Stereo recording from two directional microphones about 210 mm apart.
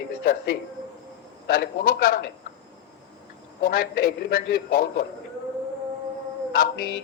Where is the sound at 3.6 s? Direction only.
45° left (ahead or behind).